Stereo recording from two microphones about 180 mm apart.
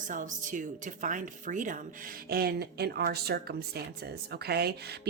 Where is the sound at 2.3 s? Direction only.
60° right (ahead or behind).